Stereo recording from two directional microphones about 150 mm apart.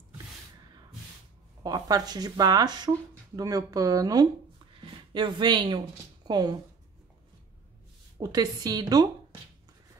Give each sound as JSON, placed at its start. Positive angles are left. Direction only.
{"t": 1.6, "sound": "speech", "side_deg": -25}
{"t": 4.7, "sound": "a sound", "side_deg": -30}
{"t": 6.2, "sound": "speech", "side_deg": -30}
{"t": 8.2, "sound": "speech", "side_deg": -25}